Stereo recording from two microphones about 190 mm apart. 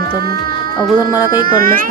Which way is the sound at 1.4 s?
50° right (ahead or behind).